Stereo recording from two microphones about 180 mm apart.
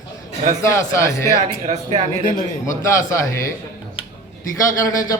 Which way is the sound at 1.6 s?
40° right (ahead or behind).